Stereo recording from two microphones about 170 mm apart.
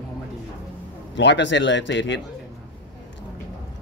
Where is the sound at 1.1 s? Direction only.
90° left.